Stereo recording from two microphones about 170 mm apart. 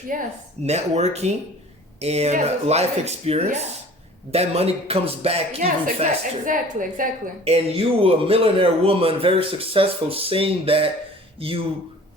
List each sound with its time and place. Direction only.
0.1 s a woman's voice: 55° right (ahead or behind)
0.6 s speech: 40° right (ahead or behind)
6.0 s a woman's voice: 50° right (ahead or behind)
7.4 s speech: 35° right (ahead or behind)